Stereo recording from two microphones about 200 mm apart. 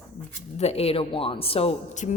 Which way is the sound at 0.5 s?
30° left (ahead or behind).